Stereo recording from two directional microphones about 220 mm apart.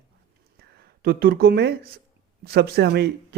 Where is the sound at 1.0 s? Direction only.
45° right (ahead or behind).